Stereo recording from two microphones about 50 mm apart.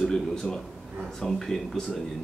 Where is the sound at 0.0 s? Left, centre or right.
Centre.